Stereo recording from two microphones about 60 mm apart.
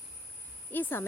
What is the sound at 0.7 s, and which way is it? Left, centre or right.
Speech, left.